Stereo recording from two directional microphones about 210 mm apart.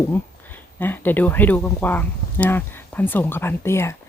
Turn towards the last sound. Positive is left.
turn(degrees=10)  # may be behind; listen again after turning